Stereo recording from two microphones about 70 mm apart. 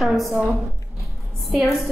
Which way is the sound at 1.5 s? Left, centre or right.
Centre.